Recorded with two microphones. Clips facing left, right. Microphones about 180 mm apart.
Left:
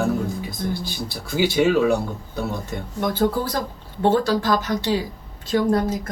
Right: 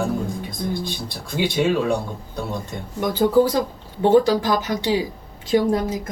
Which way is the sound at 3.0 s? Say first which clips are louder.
Right 5 dB; 15° right (ahead or behind).